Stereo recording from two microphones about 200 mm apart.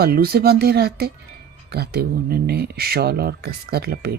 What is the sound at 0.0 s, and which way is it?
Speech, 50° right (ahead or behind).